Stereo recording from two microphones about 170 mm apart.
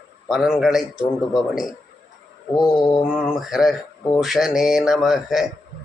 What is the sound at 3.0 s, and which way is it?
Mantra, 5° right (ahead or behind).